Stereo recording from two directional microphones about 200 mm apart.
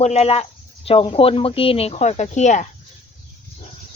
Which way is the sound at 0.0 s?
30° left (ahead or behind).